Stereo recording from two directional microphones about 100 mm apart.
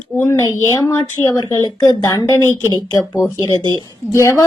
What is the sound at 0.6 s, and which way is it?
Speech, 30° left (ahead or behind).